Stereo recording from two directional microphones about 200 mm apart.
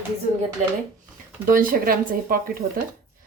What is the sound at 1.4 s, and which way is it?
Speech, 45° right (ahead or behind).